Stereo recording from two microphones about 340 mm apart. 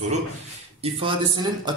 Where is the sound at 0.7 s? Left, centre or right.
Centre.